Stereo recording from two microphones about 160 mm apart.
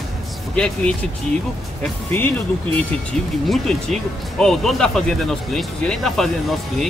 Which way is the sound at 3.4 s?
5° left (ahead or behind).